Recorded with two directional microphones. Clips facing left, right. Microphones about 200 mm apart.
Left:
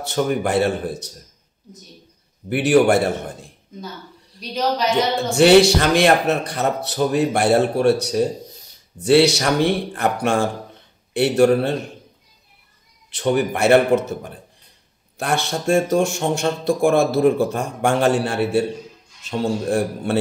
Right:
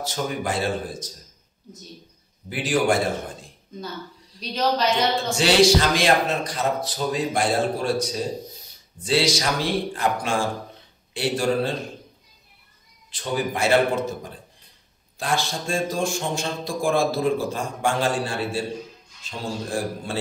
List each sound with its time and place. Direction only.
0.0 s speech: 60° left (ahead or behind)
2.5 s speech: 65° left (ahead or behind)
4.4 s a woman's voice: 15° left (ahead or behind)
5.3 s speech: 60° left (ahead or behind)
13.1 s speech: 65° left (ahead or behind)
15.1 s speech: 65° left (ahead or behind)